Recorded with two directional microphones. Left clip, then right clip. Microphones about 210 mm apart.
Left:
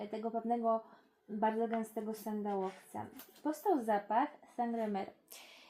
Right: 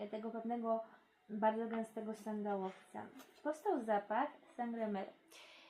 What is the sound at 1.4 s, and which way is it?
Speech, 40° left (ahead or behind).